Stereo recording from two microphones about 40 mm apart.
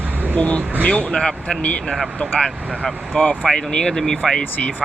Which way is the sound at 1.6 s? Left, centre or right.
Left.